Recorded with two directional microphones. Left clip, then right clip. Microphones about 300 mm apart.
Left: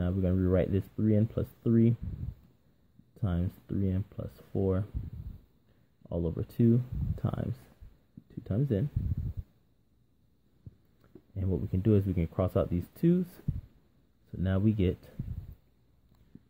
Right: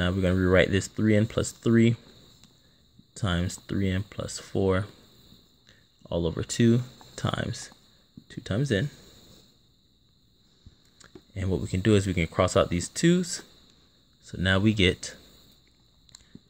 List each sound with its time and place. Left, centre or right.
0.0 s speech: centre
3.2 s speech: centre
4.5 s speech: right
6.0 s speech: centre
11.0 s a sound: centre
11.7 s speech: centre
14.4 s speech: centre